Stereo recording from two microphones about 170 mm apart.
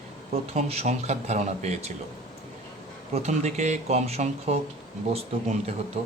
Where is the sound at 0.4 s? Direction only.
35° right (ahead or behind).